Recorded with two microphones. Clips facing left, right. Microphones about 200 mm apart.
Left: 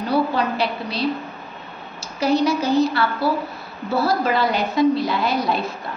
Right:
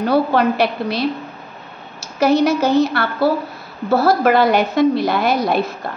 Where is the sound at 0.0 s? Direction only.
55° right (ahead or behind); by 0.9 s 70° right (ahead or behind).